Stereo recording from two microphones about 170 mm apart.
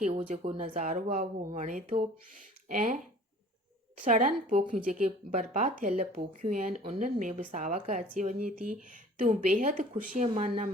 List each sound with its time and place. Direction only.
0.0 s speech: 45° right (ahead or behind)